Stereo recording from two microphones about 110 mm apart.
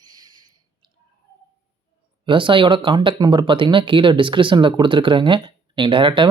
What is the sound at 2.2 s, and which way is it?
Speech, 50° right (ahead or behind).